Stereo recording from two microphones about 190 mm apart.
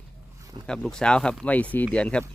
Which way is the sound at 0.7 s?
5° left (ahead or behind).